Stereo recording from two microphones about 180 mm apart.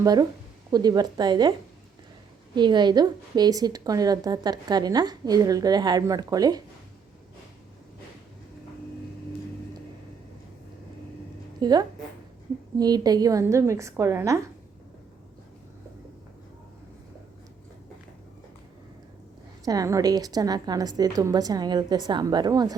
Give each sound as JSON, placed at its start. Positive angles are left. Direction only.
{"t": 0.0, "sound": "a woman's voice", "side_deg": -20}
{"t": 2.6, "sound": "a woman's voice", "side_deg": -25}
{"t": 11.6, "sound": "a woman's voice", "side_deg": -25}
{"t": 19.6, "sound": "a woman's voice", "side_deg": -20}